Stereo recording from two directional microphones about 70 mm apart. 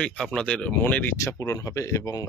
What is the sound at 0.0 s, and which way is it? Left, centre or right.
Speech, centre.